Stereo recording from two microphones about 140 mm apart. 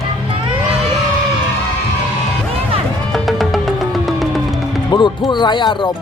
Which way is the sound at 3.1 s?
Centre (ahead or behind).